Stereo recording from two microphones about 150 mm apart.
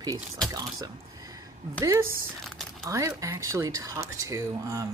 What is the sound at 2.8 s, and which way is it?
Speech, 20° right (ahead or behind).